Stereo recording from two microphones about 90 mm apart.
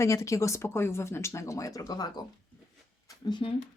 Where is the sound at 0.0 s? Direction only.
35° left (ahead or behind).